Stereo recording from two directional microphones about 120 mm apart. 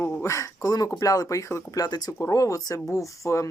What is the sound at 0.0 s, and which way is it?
Speech, 25° left (ahead or behind).